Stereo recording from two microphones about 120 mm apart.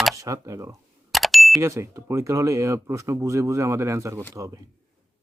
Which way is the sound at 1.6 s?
25° right (ahead or behind).